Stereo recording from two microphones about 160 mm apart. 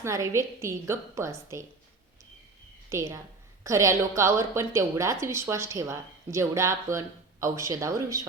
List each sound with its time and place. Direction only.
0.0 s a woman's voice: 20° right (ahead or behind)
2.9 s a woman's voice: 15° right (ahead or behind)